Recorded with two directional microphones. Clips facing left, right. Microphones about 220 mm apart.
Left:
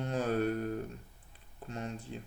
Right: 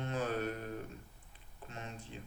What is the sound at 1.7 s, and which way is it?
Speech, 35° left (ahead or behind).